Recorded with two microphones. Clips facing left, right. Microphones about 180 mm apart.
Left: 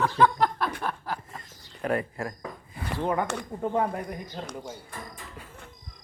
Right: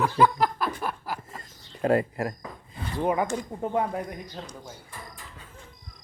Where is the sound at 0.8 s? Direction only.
5° right (ahead or behind).